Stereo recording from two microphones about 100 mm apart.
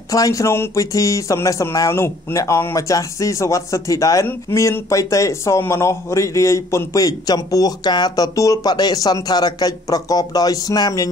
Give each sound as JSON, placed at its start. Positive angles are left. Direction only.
{"t": 0.1, "sound": "speech", "side_deg": 35}